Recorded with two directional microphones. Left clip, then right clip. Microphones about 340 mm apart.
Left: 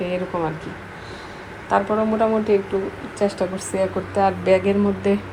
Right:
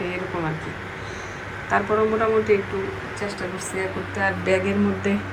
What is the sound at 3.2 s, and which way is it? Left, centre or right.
A woman's voice, centre.